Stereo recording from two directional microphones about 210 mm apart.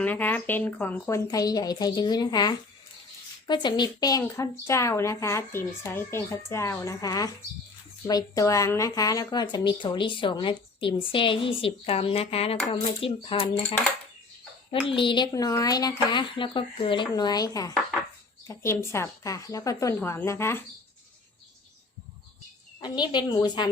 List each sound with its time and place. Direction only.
0.0 s a woman's voice: 10° left (ahead or behind); by 13.5 s 25° left (ahead or behind)
14.7 s a woman's voice: 25° left (ahead or behind)
22.8 s speech: 20° left (ahead or behind)